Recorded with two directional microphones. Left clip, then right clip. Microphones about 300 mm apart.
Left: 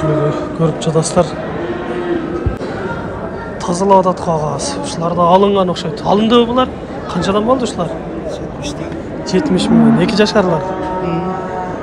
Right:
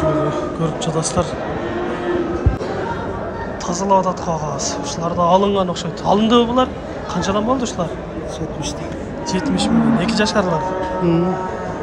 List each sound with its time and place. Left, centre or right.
0.0 s a sound: centre
3.6 s speech: right
5.0 s a man's voice: centre
9.3 s a man's voice: centre